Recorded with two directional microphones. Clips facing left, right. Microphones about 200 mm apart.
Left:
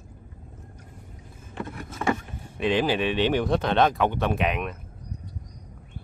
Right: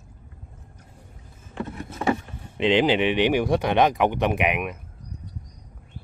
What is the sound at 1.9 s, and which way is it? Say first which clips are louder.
Speech: right 2 dB; 20° right (ahead or behind).